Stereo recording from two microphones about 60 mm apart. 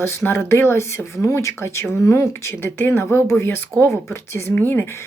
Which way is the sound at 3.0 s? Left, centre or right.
Left.